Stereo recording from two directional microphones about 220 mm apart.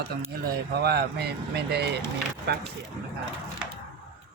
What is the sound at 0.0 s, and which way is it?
Speech, 45° right (ahead or behind).